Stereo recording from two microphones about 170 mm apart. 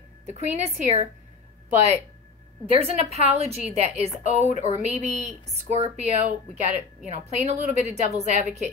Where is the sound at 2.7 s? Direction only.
35° right (ahead or behind).